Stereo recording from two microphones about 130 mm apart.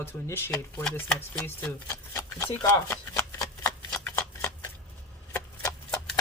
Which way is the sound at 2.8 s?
25° left (ahead or behind).